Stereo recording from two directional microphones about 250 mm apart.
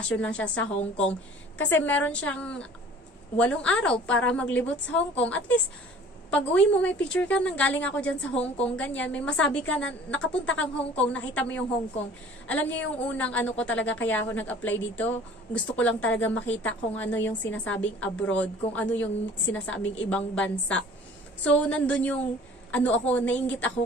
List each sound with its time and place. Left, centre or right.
0.1 s a woman's voice: centre
12.4 s a woman's voice: centre